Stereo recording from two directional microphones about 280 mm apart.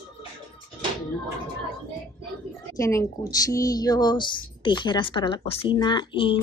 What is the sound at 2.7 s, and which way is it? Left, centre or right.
Speech, centre.